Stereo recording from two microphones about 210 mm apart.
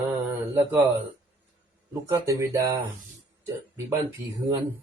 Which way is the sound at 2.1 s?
15° right (ahead or behind).